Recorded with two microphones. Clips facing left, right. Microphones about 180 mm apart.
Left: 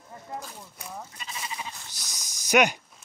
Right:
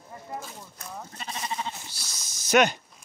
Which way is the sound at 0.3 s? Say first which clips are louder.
Even; 5° right (ahead or behind).